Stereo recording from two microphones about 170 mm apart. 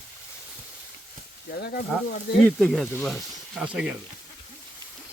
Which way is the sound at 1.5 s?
75° left (ahead or behind).